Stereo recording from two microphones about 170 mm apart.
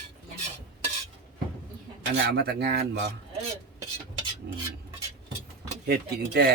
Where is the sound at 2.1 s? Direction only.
75° right (ahead or behind).